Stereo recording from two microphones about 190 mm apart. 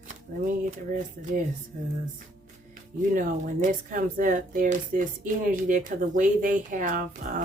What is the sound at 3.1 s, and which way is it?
A woman's voice, 45° right (ahead or behind).